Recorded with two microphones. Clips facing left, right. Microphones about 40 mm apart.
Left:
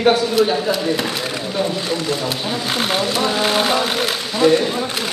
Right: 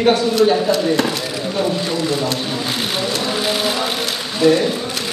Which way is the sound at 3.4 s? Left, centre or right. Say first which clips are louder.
Left 4 dB; left.